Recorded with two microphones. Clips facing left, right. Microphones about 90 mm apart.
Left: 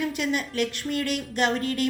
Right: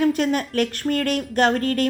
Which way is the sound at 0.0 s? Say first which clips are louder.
Right 7 dB; 45° right (ahead or behind).